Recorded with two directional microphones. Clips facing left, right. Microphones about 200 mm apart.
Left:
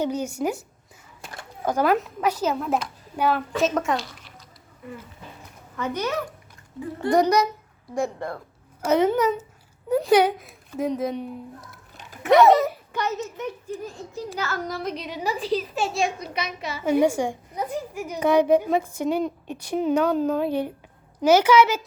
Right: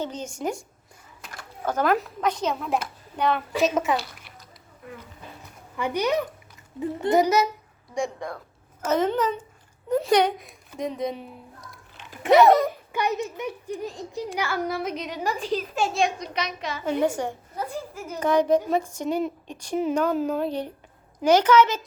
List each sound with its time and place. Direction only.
0.0 s a woman's voice: 10° left (ahead or behind)
1.6 s speech: 10° left (ahead or behind)
5.7 s a child's voice: 15° right (ahead or behind)
7.1 s a woman's voice: 5° right (ahead or behind)
12.9 s a child's voice: 15° right (ahead or behind)
21.2 s a woman's voice: 10° left (ahead or behind)